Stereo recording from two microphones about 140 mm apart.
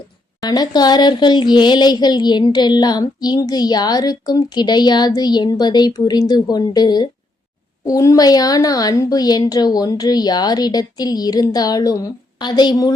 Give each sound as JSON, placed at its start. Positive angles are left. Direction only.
{"t": 0.4, "sound": "speech", "side_deg": 30}